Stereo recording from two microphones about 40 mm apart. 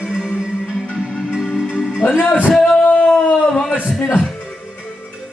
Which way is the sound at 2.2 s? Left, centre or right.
Left.